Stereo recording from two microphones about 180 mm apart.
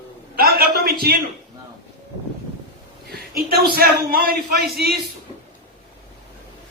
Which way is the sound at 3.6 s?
55° right (ahead or behind).